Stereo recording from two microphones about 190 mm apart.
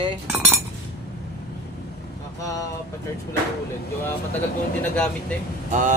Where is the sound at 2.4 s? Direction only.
15° left (ahead or behind).